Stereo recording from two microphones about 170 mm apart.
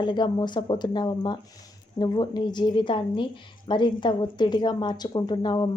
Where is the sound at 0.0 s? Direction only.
25° left (ahead or behind).